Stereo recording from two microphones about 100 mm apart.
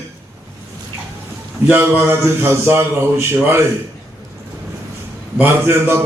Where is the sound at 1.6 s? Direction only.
20° right (ahead or behind).